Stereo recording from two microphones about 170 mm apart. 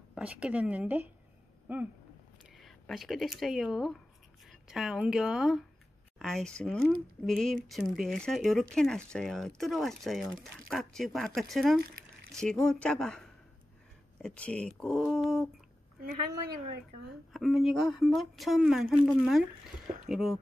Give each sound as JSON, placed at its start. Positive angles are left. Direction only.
{"t": 0.1, "sound": "a woman's voice", "side_deg": -5}
{"t": 16.0, "sound": "a woman's voice", "side_deg": -60}
{"t": 17.3, "sound": "speech", "side_deg": 0}
{"t": 20.1, "sound": "speech", "side_deg": 0}